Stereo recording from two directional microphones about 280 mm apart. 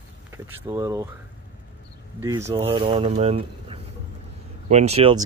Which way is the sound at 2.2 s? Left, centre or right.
Centre.